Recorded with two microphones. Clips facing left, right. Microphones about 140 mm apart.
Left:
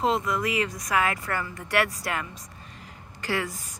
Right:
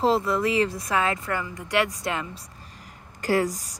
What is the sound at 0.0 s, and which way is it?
A woman's voice, 30° right (ahead or behind).